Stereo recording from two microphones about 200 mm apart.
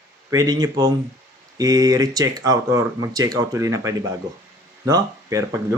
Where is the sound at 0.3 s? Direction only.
20° right (ahead or behind).